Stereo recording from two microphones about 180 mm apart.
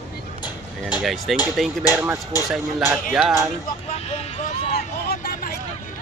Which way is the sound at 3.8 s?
35° left (ahead or behind).